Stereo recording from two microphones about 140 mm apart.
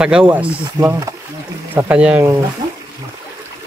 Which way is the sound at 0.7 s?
20° right (ahead or behind).